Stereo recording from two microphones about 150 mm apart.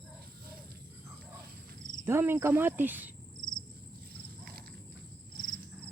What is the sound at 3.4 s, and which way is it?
Cricket, 30° left (ahead or behind).